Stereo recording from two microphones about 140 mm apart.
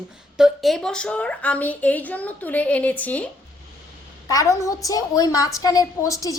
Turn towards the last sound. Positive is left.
turn(degrees=25)  # may be behind; listen again after turning